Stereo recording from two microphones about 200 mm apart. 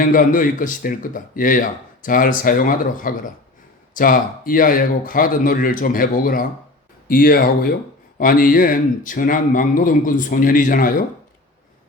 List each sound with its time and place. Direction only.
0.0 s speech: 45° left (ahead or behind)